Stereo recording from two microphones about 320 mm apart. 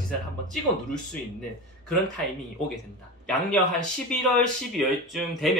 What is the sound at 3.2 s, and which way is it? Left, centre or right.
Speech, centre.